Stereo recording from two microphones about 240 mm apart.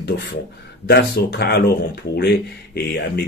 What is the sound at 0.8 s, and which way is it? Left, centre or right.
Speech, left.